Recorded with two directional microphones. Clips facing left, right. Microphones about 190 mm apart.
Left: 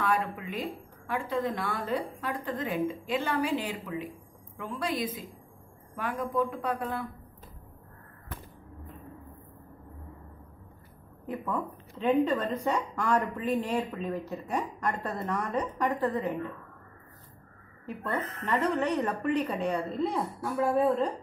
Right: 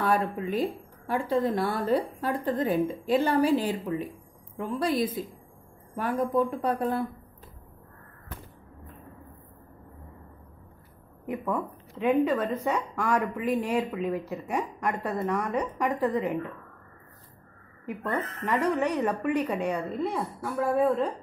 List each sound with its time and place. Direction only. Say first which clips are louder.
0.0 s a woman's voice: right 3 dB; 35° right (ahead or behind)
11.2 s speech: right 3 dB; 10° right (ahead or behind)
17.8 s a woman's voice: right 2 dB; 15° right (ahead or behind)